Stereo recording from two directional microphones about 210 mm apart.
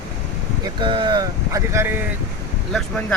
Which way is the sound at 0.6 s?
25° right (ahead or behind).